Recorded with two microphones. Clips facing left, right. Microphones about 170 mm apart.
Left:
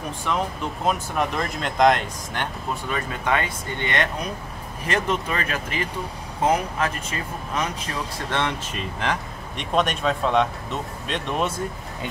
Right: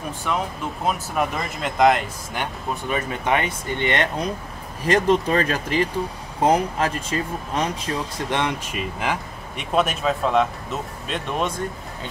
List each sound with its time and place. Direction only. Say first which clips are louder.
0.3 s speech: even; centre (ahead or behind)
2.7 s speech: right 4 dB; 20° right (ahead or behind)
8.3 s speech: right 1 dB; 15° right (ahead or behind)